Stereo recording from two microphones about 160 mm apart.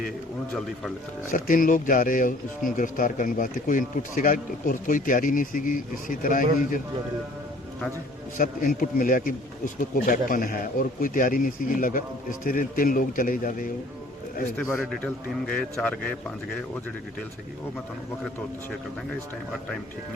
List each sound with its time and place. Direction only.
1.3 s speech: 60° left (ahead or behind)
8.4 s speech: 60° left (ahead or behind)
14.7 s a man's voice: 10° left (ahead or behind)